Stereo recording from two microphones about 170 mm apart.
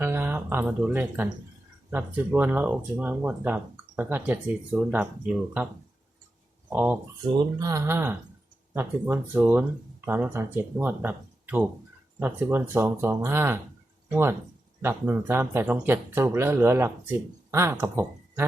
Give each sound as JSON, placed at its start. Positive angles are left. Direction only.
{"t": 0.0, "sound": "speech", "side_deg": -15}
{"t": 6.7, "sound": "speech", "side_deg": -10}
{"t": 14.8, "sound": "speech", "side_deg": -15}